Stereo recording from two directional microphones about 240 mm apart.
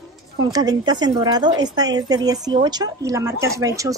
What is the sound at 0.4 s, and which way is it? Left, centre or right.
A woman's voice, centre.